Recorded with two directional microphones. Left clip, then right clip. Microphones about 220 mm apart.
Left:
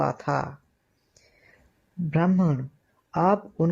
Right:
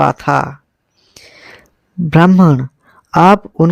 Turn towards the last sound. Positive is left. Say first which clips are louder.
# right 14 dB
turn(degrees=-40)  # may be behind; listen again after turning